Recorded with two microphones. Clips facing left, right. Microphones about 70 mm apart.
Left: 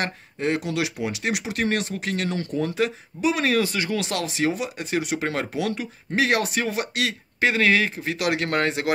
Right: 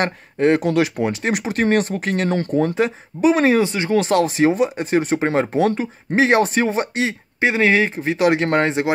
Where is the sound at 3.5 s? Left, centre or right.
Right.